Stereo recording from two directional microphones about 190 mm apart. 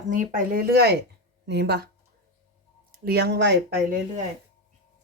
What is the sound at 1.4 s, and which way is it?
Speech, 60° right (ahead or behind).